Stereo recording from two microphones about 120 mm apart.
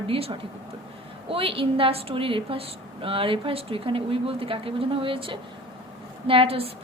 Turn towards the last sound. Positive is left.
turn(degrees=-55)  # may be behind; listen again after turning